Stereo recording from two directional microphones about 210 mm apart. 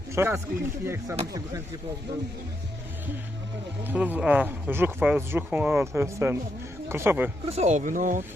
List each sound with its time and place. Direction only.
0.1 s speech: 10° right (ahead or behind)
3.8 s speech: 10° right (ahead or behind)
7.4 s speech: 30° right (ahead or behind)